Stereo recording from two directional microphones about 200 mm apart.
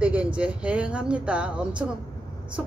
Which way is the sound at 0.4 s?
5° right (ahead or behind).